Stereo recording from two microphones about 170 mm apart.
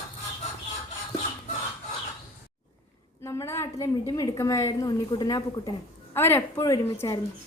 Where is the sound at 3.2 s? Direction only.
15° left (ahead or behind).